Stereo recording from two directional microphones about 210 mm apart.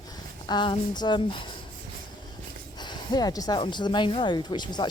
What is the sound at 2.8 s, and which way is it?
Speech, 20° left (ahead or behind).